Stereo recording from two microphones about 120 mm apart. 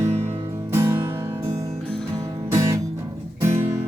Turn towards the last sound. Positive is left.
turn(degrees=-15)  # may be behind; listen again after turning